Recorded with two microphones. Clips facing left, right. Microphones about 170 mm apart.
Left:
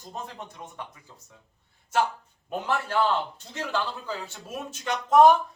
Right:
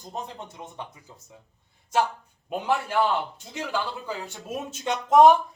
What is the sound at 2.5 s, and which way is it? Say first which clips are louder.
Speech: right 2 dB; 15° right (ahead or behind).